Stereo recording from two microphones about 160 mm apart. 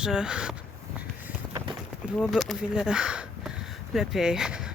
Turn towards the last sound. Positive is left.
turn(degrees=-5)  # may be behind; listen again after turning